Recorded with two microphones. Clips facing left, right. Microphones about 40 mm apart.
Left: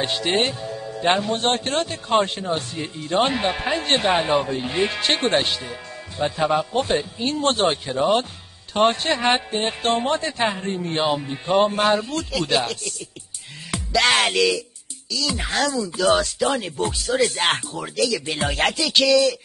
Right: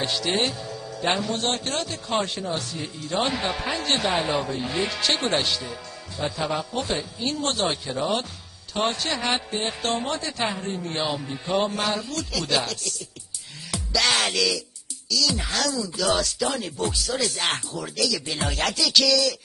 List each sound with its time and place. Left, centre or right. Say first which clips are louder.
0.0 s speech: left 3 dB; left
11.5 s speech: left 7 dB; left
13.7 s music: left 4 dB; left
15.0 s speech: even; left